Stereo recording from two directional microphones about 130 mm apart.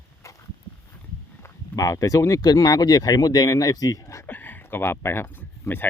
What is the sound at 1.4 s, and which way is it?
Speech, 25° left (ahead or behind).